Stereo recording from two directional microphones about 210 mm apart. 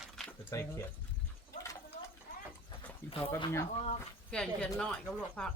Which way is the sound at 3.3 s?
20° left (ahead or behind).